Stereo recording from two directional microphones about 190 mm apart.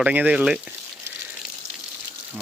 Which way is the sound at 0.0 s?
10° right (ahead or behind).